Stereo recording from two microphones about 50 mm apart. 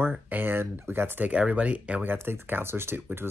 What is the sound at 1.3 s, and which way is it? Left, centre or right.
Speech, right.